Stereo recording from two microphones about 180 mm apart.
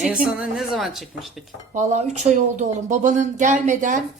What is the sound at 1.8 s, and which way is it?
A woman's voice, 40° right (ahead or behind).